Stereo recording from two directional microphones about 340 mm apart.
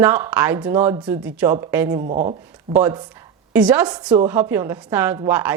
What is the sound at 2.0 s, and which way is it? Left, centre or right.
Speech, centre.